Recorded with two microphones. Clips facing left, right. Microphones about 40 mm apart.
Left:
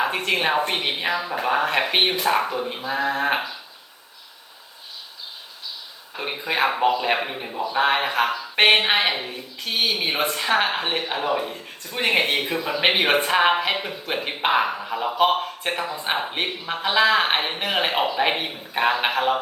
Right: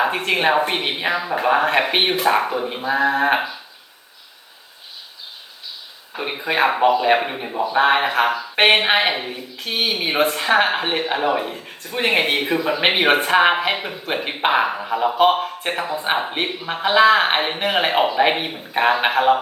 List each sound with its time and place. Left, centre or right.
0.7 s speech: centre
6.1 s speech: centre